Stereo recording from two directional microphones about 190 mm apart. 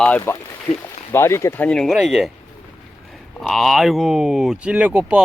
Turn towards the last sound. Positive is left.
turn(degrees=-5)  # may be behind; listen again after turning